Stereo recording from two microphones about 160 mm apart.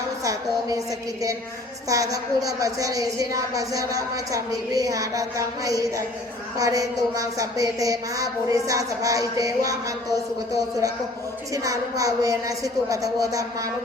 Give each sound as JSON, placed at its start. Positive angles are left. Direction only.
{"t": 1.9, "sound": "a woman's voice", "side_deg": -20}
{"t": 10.5, "sound": "a woman's voice", "side_deg": -20}